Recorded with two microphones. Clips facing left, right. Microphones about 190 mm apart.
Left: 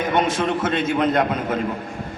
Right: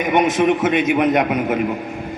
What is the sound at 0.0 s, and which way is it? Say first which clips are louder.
A man's voice: right 5 dB; 15° right (ahead or behind).